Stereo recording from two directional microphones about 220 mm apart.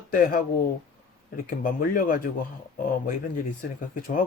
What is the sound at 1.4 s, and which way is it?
Speech, 40° left (ahead or behind).